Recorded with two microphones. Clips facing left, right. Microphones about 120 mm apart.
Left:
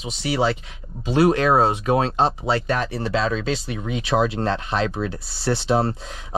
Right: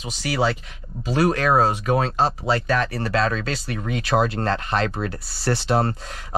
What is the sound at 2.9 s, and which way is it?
Speech, centre (ahead or behind).